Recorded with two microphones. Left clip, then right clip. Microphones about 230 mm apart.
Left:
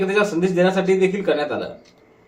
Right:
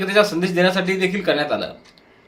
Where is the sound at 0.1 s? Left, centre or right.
Right.